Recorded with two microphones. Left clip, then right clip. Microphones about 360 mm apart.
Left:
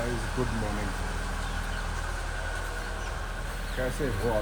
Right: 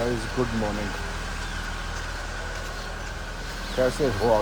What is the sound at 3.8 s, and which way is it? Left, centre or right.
Speech, centre.